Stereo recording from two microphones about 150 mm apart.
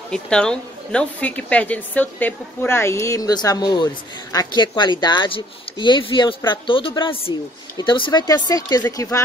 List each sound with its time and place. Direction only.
0.1 s a woman's voice: 5° left (ahead or behind); by 9.2 s 20° left (ahead or behind)